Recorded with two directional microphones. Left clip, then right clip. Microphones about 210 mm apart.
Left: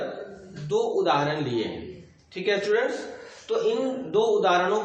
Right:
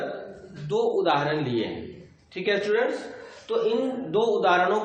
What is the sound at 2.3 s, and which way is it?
A man's voice, 15° right (ahead or behind).